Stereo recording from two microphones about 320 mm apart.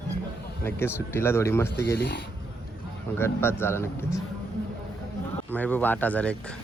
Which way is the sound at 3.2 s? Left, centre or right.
Centre.